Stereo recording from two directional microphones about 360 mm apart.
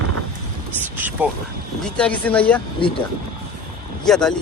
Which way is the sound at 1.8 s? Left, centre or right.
Centre.